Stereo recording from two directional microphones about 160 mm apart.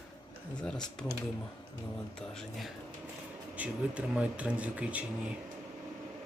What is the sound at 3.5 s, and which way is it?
Speech, 10° right (ahead or behind).